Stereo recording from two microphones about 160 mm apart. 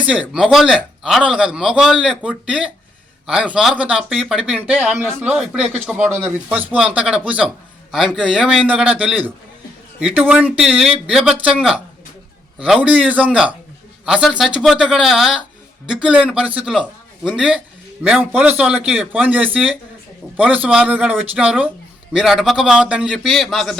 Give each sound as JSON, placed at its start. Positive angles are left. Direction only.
{"t": 0.0, "sound": "speech", "side_deg": -5}